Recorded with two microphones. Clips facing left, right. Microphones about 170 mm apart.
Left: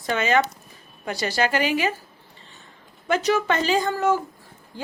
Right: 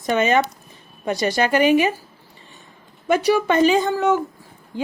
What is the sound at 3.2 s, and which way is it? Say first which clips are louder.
Speech: right 6 dB; 10° right (ahead or behind).